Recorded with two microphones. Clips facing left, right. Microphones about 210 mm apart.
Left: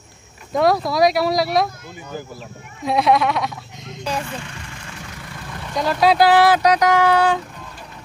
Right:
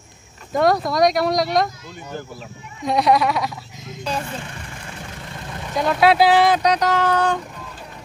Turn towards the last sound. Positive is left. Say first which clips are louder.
# left 3 dB
turn(degrees=10)  # may be behind; listen again after turning